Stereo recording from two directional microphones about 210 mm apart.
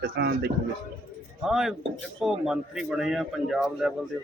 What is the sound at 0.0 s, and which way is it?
Speech, 45° right (ahead or behind).